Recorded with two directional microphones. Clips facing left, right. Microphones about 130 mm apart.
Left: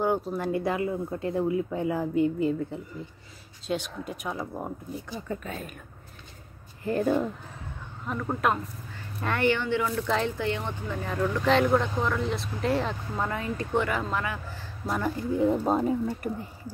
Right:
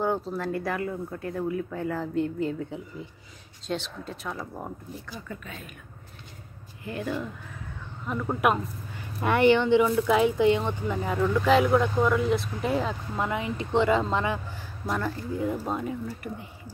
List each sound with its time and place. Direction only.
0.0 s speech: 10° left (ahead or behind)
5.3 s speech: 40° left (ahead or behind)
6.8 s speech: 40° left (ahead or behind)
8.0 s speech: centre (ahead or behind)
8.4 s speech: 15° right (ahead or behind)
14.9 s speech: 10° left (ahead or behind)
15.1 s speech: 25° left (ahead or behind); by 16.7 s 40° left (ahead or behind)